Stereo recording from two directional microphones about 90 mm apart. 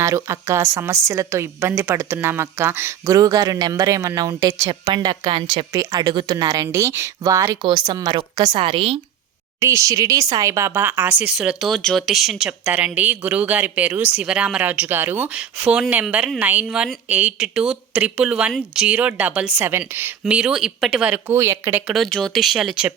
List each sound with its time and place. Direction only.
0.0 s a woman's voice: 35° right (ahead or behind)
3.2 s a woman's voice: 40° right (ahead or behind)
4.7 s speech: 55° right (ahead or behind); by 7.6 s 40° right (ahead or behind)
7.6 s a woman's voice: 50° right (ahead or behind); by 9.0 s 85° right
9.6 s a woman's voice: 35° right (ahead or behind)
11.2 s speech: 10° right (ahead or behind)
11.7 s speech: 5° left (ahead or behind); by 20.1 s 25° right (ahead or behind)
20.2 s speech: 10° right (ahead or behind)
21.3 s a woman's voice: 30° right (ahead or behind)
21.8 s speech: centre (ahead or behind)